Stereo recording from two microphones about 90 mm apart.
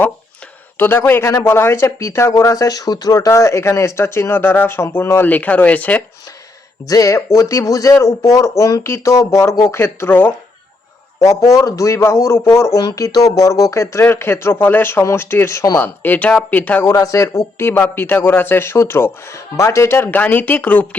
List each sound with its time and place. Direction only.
0.8 s a man's voice: 25° left (ahead or behind)
6.8 s speech: 40° left (ahead or behind); by 10.3 s 20° left (ahead or behind)
11.4 s speech: 35° left (ahead or behind)
12.8 s speech: 45° left (ahead or behind)
16.0 s speech: 15° left (ahead or behind)
16.8 s a man's voice: 40° left (ahead or behind); by 20.8 s 20° left (ahead or behind)